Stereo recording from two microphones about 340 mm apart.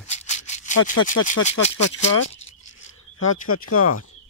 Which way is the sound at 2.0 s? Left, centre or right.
Left.